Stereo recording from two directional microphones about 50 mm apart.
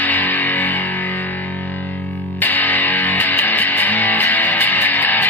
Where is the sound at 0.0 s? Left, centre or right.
Left.